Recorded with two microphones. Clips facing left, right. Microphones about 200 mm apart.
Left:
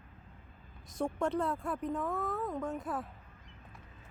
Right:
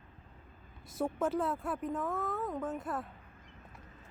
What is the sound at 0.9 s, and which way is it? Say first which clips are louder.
Speech: even; 5° right (ahead or behind).